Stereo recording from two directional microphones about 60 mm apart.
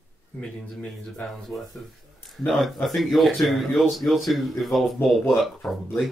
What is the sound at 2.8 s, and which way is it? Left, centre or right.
Speech, centre.